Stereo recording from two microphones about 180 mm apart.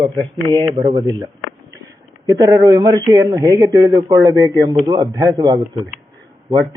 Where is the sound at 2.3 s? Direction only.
20° right (ahead or behind).